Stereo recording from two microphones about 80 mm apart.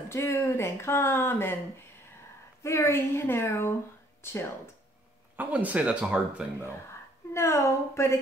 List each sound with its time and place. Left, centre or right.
0.1 s speech: left
2.6 s speech: left
5.3 s speech: right
7.3 s speech: left